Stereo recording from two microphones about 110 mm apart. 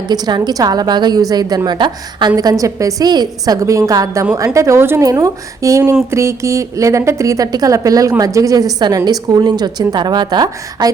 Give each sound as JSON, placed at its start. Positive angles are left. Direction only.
{"t": 0.1, "sound": "a woman's voice", "side_deg": -40}